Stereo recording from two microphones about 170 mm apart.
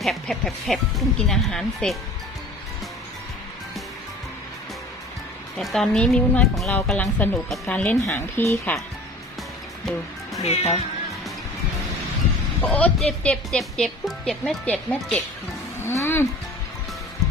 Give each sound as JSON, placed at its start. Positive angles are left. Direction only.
{"t": 0.0, "sound": "speech", "side_deg": 0}
{"t": 5.5, "sound": "a woman's voice", "side_deg": 5}
{"t": 10.4, "sound": "speech", "side_deg": 40}
{"t": 12.6, "sound": "speech", "side_deg": 10}
{"t": 15.8, "sound": "music", "side_deg": 15}